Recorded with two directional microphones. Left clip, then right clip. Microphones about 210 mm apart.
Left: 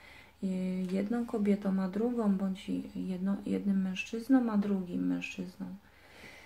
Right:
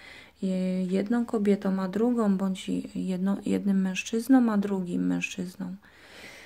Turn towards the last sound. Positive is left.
turn(degrees=-45)  # may be behind; listen again after turning